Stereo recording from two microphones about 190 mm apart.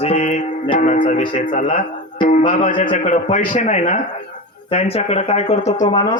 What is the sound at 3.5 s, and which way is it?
Mantra, 40° left (ahead or behind).